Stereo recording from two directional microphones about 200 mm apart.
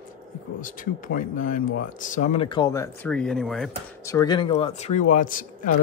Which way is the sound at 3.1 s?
5° left (ahead or behind).